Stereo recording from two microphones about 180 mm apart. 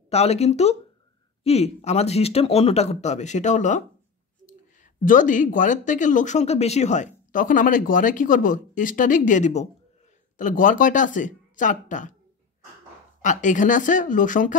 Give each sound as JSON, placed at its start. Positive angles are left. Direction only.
{"t": 0.1, "sound": "speech", "side_deg": 35}
{"t": 5.0, "sound": "speech", "side_deg": 45}
{"t": 13.2, "sound": "speech", "side_deg": 45}